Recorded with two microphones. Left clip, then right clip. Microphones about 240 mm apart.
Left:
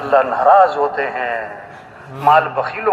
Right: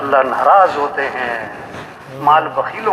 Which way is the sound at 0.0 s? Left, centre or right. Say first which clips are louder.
Even; left.